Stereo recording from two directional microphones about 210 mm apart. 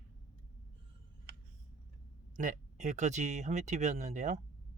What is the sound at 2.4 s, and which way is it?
Speech, 35° right (ahead or behind).